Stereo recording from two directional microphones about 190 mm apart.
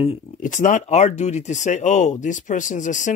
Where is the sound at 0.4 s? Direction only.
40° left (ahead or behind).